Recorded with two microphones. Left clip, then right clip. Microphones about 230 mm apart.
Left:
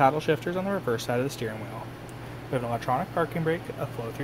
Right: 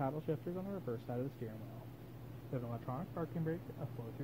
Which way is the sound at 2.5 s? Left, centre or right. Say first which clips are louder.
Left 17 dB; left.